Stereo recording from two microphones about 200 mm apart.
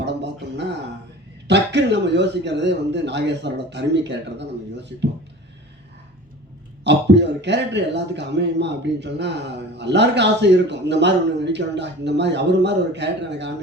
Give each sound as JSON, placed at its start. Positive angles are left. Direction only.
{"t": 0.0, "sound": "a sound", "side_deg": -60}
{"t": 1.5, "sound": "a man's voice", "side_deg": -60}
{"t": 6.8, "sound": "a man's voice", "side_deg": -60}